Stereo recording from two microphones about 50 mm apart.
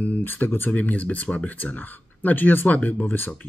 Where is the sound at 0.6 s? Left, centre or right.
Left.